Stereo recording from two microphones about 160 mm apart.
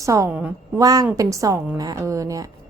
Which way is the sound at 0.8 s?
25° right (ahead or behind).